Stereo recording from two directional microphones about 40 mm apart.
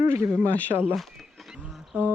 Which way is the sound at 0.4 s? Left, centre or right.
Left.